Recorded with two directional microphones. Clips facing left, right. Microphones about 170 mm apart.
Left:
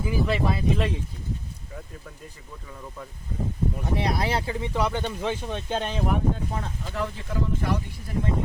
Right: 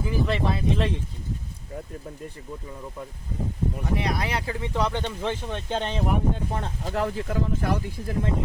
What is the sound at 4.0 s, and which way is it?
Speech, 30° left (ahead or behind).